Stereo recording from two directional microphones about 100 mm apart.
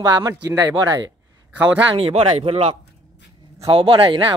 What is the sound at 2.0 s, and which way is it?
Speech, 80° right.